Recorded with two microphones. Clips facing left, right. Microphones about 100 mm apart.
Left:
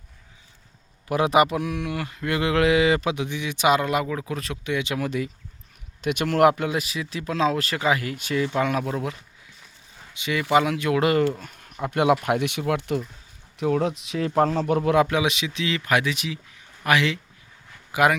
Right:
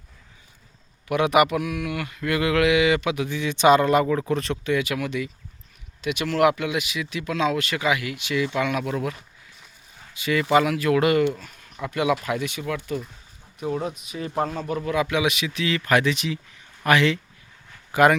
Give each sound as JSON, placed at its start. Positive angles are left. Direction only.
{"t": 1.0, "sound": "speech", "side_deg": 30}
{"t": 3.2, "sound": "a man's voice", "side_deg": 15}
{"t": 4.6, "sound": "speech", "side_deg": 20}
{"t": 5.0, "sound": "speech", "side_deg": 40}
{"t": 10.2, "sound": "speech", "side_deg": 20}
{"t": 11.3, "sound": "speech", "side_deg": 45}
{"t": 13.6, "sound": "speech", "side_deg": 75}
{"t": 14.8, "sound": "speech", "side_deg": 50}
{"t": 15.1, "sound": "speech", "side_deg": 25}